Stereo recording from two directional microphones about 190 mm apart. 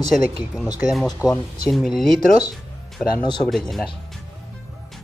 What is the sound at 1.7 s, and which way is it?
Speech, centre (ahead or behind).